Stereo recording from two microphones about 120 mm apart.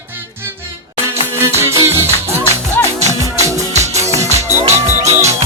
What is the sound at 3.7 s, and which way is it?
Music, 70° right (ahead or behind).